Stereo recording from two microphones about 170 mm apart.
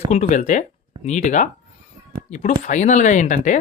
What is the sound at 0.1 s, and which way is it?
Speech, 45° left (ahead or behind).